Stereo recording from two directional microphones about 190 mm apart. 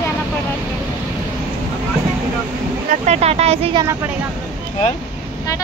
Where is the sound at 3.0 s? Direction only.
35° right (ahead or behind).